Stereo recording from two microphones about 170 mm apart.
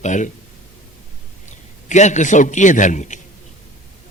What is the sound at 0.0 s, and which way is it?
Speech, 45° left (ahead or behind).